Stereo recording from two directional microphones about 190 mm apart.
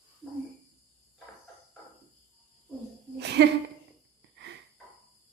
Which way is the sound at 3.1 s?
65° right (ahead or behind).